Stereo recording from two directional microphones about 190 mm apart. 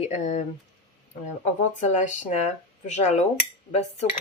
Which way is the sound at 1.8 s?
40° left (ahead or behind).